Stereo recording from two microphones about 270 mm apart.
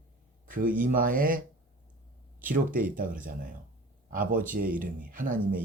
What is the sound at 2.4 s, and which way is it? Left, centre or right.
Speech, right.